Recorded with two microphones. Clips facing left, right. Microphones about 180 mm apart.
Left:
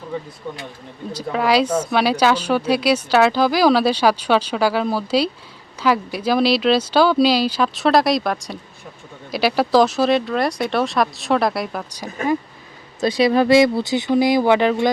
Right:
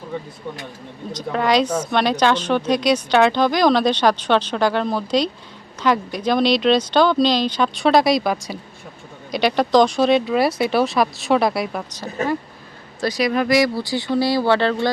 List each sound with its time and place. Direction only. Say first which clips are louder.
1.1 s speech: even; 5° left (ahead or behind)
11.9 s speech: left 1 dB; 10° left (ahead or behind)
13.0 s speech: left 4 dB; 25° left (ahead or behind)